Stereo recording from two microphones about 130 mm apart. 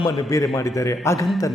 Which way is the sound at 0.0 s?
25° left (ahead or behind).